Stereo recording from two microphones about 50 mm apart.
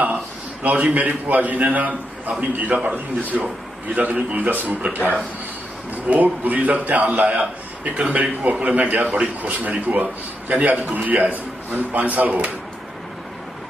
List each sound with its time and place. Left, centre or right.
0.0 s a man's voice: right
6.0 s a man's voice: right